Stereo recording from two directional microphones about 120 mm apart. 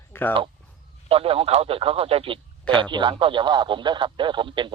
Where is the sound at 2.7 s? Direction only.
40° right (ahead or behind).